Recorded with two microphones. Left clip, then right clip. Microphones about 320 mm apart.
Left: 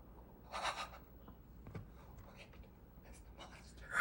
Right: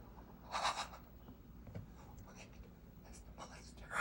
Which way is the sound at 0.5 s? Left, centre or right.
Centre.